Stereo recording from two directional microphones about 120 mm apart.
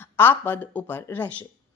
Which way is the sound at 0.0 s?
15° left (ahead or behind).